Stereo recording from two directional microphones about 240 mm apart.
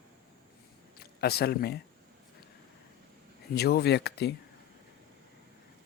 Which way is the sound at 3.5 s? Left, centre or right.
Left.